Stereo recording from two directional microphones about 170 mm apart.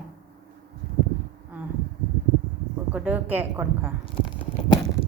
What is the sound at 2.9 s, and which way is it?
Speech, 10° right (ahead or behind).